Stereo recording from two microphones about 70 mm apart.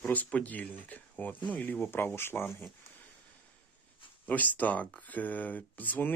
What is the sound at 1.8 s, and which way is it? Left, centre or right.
Speech, left.